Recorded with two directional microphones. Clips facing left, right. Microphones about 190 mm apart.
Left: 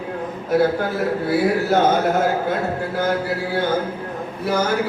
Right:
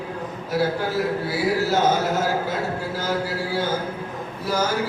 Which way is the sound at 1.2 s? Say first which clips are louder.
Left 4 dB; 55° left (ahead or behind).